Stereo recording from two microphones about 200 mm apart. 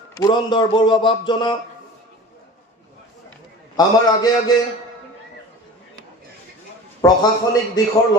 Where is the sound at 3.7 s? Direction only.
20° left (ahead or behind).